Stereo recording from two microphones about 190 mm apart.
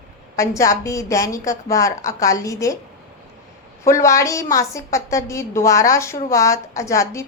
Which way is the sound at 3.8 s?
15° left (ahead or behind).